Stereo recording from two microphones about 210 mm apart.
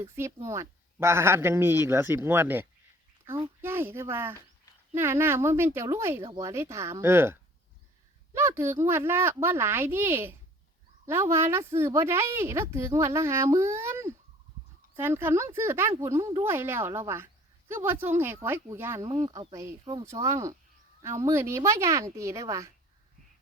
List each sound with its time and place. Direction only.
0.0 s a woman's voice: 15° right (ahead or behind)